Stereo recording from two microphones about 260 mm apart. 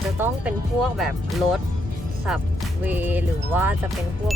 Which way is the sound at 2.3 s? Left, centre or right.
Centre.